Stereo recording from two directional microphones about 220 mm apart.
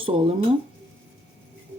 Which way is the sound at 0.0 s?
25° right (ahead or behind).